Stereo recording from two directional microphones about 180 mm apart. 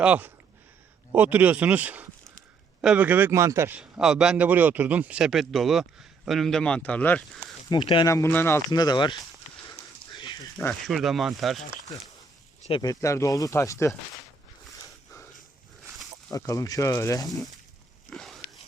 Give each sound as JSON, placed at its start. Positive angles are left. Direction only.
{"t": 0.0, "sound": "a man's voice", "side_deg": -5}
{"t": 7.7, "sound": "speech", "side_deg": 25}
{"t": 8.1, "sound": "speech", "side_deg": 15}
{"t": 9.6, "sound": "pig", "side_deg": 20}
{"t": 10.6, "sound": "a man's voice", "side_deg": 5}
{"t": 12.8, "sound": "speech", "side_deg": 20}
{"t": 14.8, "sound": "a sound", "side_deg": 15}
{"t": 16.3, "sound": "speech", "side_deg": 20}
{"t": 18.1, "sound": "a sound", "side_deg": 0}